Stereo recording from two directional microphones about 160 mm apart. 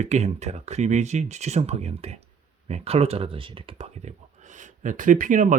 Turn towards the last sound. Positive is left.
turn(degrees=-55)  # may be behind; listen again after turning